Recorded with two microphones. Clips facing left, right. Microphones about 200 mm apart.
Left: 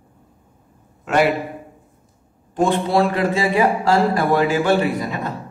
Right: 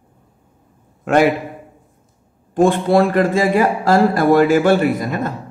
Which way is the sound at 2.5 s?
50° right (ahead or behind).